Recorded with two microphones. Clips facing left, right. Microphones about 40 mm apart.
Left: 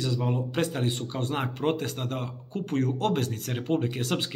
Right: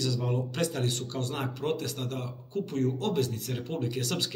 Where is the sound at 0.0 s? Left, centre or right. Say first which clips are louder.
Left 2 dB; left.